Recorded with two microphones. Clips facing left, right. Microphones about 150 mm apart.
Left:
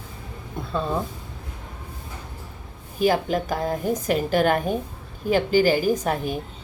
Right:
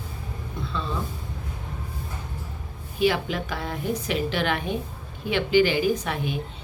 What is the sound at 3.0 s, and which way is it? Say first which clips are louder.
Speech: left 3 dB; 40° left (ahead or behind).